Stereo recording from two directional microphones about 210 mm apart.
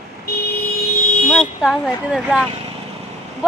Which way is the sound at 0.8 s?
45° left (ahead or behind).